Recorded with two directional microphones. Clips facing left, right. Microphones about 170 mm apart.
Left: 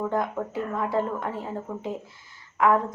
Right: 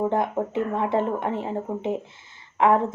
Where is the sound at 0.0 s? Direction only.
25° right (ahead or behind).